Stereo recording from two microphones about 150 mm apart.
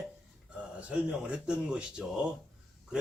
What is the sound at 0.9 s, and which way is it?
Speech, 5° right (ahead or behind).